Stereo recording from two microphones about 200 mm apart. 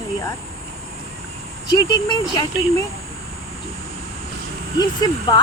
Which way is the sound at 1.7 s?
20° left (ahead or behind).